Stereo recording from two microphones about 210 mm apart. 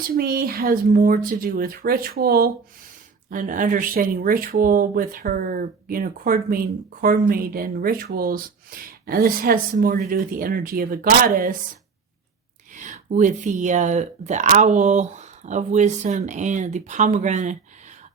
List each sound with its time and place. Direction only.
0.0 s speech: 45° right (ahead or behind)
12.7 s speech: 35° right (ahead or behind)